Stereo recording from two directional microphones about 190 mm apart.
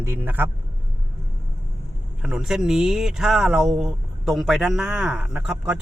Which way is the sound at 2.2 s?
5° right (ahead or behind).